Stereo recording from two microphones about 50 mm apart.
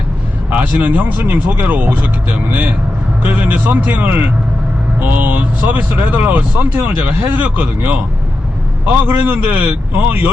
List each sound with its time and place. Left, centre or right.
0.5 s speech: right